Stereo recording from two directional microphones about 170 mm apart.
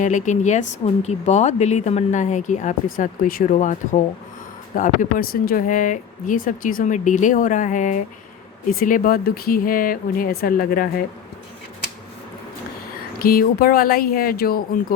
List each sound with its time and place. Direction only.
0.0 s speech: 45° left (ahead or behind)
13.1 s speech: 60° left (ahead or behind)